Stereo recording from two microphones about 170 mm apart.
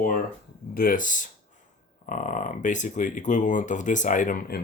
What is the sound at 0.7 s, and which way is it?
Speech, 55° left (ahead or behind).